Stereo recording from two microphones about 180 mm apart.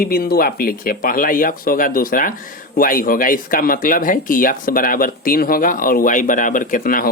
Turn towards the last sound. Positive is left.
turn(degrees=50)  # may be behind; listen again after turning